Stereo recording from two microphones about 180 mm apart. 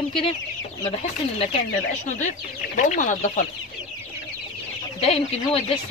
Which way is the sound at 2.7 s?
45° left (ahead or behind).